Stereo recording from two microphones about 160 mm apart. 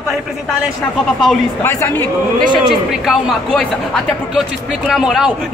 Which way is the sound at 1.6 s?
15° left (ahead or behind).